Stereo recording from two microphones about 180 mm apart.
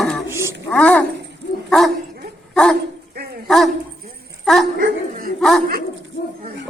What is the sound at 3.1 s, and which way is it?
Dog, 60° right (ahead or behind).